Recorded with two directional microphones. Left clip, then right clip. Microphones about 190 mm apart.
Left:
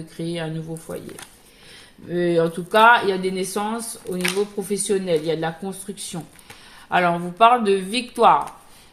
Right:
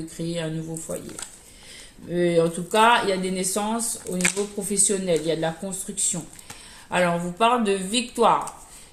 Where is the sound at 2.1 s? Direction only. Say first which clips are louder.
Left 1 dB; 35° left (ahead or behind).